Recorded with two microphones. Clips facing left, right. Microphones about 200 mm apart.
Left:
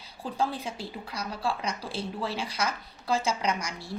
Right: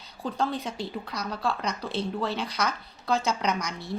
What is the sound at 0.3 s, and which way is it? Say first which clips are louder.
Speech: right 1 dB; 5° left (ahead or behind).